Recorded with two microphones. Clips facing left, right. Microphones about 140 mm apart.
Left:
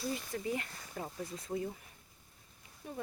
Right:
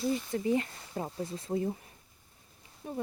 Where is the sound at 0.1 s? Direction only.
25° right (ahead or behind).